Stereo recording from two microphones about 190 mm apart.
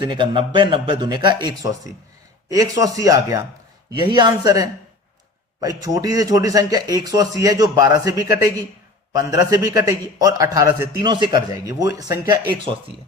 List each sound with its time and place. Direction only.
0.0 s a man's voice: 25° right (ahead or behind)